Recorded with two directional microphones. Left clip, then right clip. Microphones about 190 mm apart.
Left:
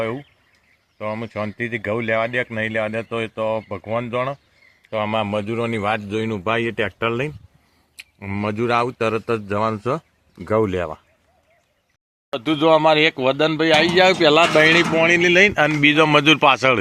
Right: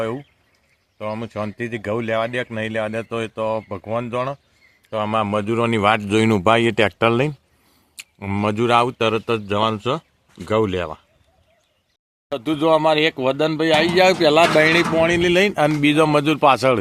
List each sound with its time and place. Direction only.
0.9 s a man's voice: 10° right (ahead or behind); by 9.6 s 30° right (ahead or behind)
10.3 s speech: centre (ahead or behind)
12.3 s speech: centre (ahead or behind)
14.9 s speech: 15° right (ahead or behind); by 16.8 s centre (ahead or behind)